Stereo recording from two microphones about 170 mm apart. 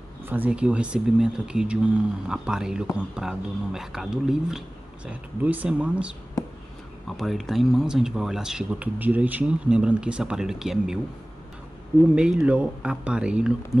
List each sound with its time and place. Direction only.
0.2 s speech: 10° right (ahead or behind)
12.2 s speech: 5° right (ahead or behind)